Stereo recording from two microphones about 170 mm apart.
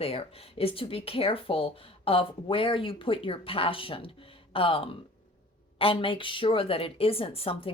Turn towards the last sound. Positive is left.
turn(degrees=35)  # may be behind; listen again after turning